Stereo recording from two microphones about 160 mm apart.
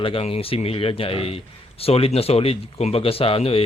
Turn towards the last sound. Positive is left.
turn(degrees=35)  # may be behind; listen again after turning